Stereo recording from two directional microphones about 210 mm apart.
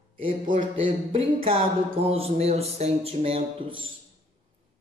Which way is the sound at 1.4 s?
25° right (ahead or behind).